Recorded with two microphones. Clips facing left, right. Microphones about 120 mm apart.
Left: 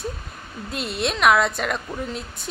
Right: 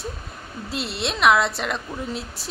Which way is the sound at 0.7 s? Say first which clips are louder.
Even; 50° left (ahead or behind).